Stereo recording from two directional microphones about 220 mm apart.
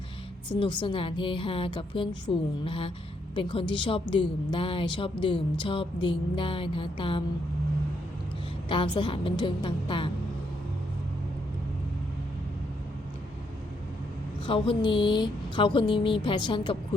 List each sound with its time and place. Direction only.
0.5 s speech: 20° left (ahead or behind)
8.7 s speech: 20° left (ahead or behind)
14.4 s speech: 25° left (ahead or behind)